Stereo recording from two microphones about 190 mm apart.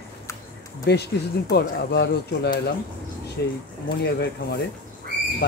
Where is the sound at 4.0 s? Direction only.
60° left (ahead or behind).